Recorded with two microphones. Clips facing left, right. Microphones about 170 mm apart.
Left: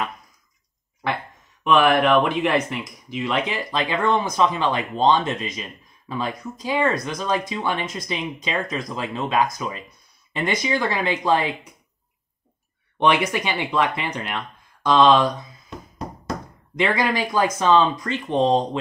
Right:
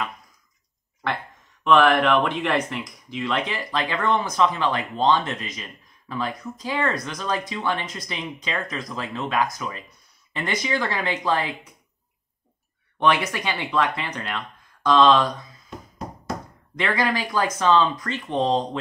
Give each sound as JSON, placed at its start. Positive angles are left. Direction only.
{"t": 1.6, "sound": "speech", "side_deg": 15}
{"t": 13.0, "sound": "speech", "side_deg": 20}
{"t": 16.7, "sound": "speech", "side_deg": 15}